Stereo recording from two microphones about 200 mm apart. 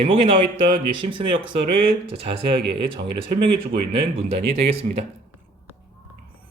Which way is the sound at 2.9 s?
25° right (ahead or behind).